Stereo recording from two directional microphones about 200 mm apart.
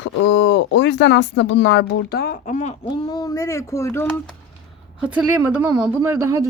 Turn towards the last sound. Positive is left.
turn(degrees=-15)  # may be behind; listen again after turning